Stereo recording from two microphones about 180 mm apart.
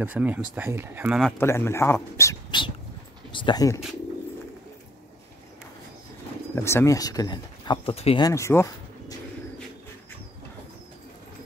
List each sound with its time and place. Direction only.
0.0 s speech: 10° right (ahead or behind)
1.4 s speech: 15° left (ahead or behind)
3.3 s speech: 25° left (ahead or behind)
6.5 s speech: 15° left (ahead or behind)
7.9 s speech: 35° left (ahead or behind)
8.2 s speech: 15° left (ahead or behind)